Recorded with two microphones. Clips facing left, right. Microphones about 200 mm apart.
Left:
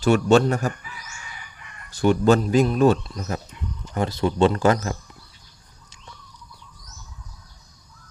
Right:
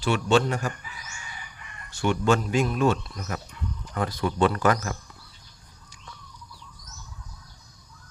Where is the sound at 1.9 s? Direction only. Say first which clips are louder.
Left 6 dB; 35° left (ahead or behind).